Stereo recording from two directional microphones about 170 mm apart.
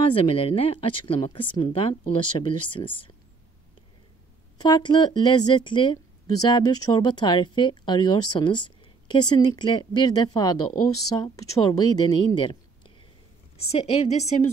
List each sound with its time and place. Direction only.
0.3 s speech: 35° left (ahead or behind)
4.6 s speech: 25° left (ahead or behind)
13.7 s speech: 35° left (ahead or behind)